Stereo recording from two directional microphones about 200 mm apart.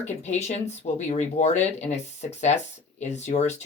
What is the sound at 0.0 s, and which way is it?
Speech, 35° left (ahead or behind).